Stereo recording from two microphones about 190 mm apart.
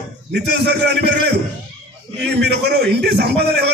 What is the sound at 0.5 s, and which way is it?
Speech, 60° right (ahead or behind).